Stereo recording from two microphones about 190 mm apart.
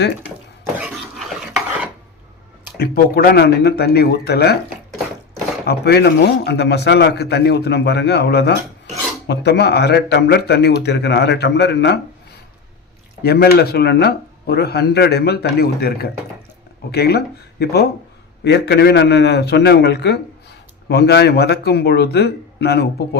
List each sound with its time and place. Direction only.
1.3 s stir: 5° right (ahead or behind)
2.7 s a man's voice: 55° left (ahead or behind)
5.6 s a man's voice: 60° left (ahead or behind)
13.2 s a man's voice: 55° left (ahead or behind)